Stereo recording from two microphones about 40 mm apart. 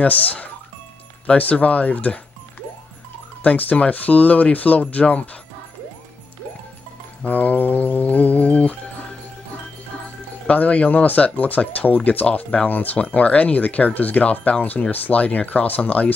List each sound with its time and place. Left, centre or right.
0.0 s speech: left
3.4 s speech: left
7.2 s music: left
10.4 s speech: left
12.6 s music: left
13.0 s speech: left